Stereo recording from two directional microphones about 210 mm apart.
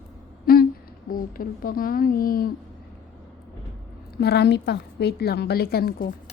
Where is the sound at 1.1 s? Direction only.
40° left (ahead or behind).